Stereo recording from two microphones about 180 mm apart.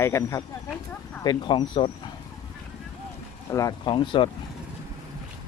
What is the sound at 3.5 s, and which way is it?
Speech, 20° left (ahead or behind).